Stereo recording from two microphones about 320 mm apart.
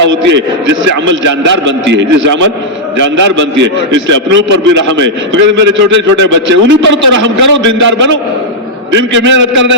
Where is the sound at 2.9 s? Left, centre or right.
Right.